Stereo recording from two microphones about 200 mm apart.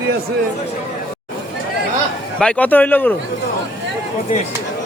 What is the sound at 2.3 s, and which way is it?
Speech, 5° left (ahead or behind).